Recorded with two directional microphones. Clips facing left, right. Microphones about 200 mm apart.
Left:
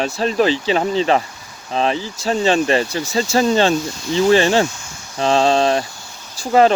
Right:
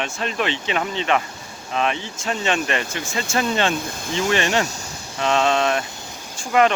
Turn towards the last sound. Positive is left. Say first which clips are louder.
# left 5 dB
turn(degrees=35)  # may be behind; listen again after turning